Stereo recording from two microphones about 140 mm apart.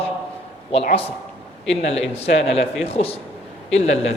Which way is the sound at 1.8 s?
50° left (ahead or behind).